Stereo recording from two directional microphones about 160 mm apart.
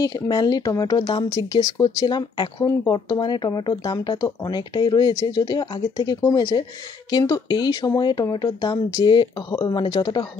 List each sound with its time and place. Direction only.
0.0 s speech: 25° left (ahead or behind)